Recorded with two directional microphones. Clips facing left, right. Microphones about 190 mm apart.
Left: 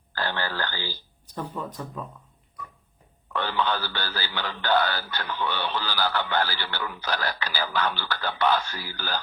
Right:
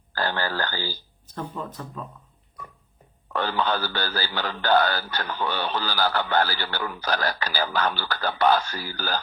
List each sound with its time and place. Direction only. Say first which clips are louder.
0.1 s speech: right 3 dB; 45° right (ahead or behind)
1.5 s speech: even; 15° left (ahead or behind)
3.3 s speech: right 2 dB; 40° right (ahead or behind)